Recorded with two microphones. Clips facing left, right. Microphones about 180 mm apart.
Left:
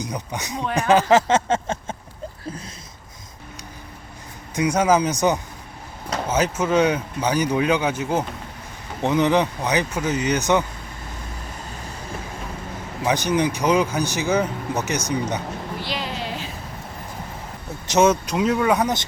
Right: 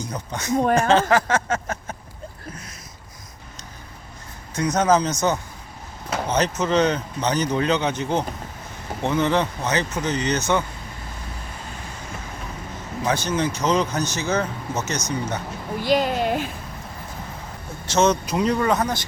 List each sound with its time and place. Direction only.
0.0 s speech: 15° left (ahead or behind)
4.5 s speech: 10° left (ahead or behind)
6.2 s speech: 5° left (ahead or behind)
13.1 s speech: 15° left (ahead or behind)
15.8 s a sound: 45° right (ahead or behind)
17.8 s speech: 10° left (ahead or behind)